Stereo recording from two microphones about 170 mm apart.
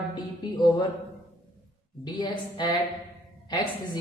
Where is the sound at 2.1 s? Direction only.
25° left (ahead or behind).